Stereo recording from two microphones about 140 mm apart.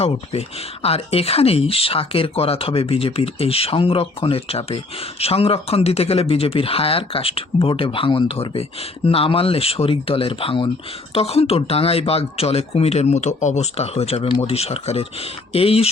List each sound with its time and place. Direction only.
0.0 s speech: 45° left (ahead or behind)